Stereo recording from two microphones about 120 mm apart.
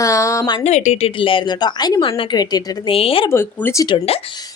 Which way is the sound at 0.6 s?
70° left (ahead or behind).